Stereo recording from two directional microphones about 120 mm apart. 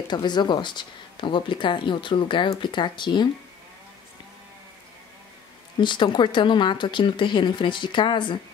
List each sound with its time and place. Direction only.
0.1 s speech: 40° left (ahead or behind)
5.8 s speech: 40° left (ahead or behind)